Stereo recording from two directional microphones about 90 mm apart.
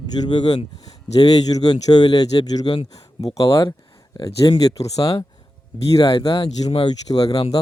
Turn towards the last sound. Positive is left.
turn(degrees=45)  # may be behind; listen again after turning